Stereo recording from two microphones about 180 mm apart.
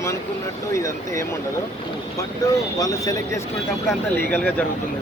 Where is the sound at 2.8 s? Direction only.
20° left (ahead or behind).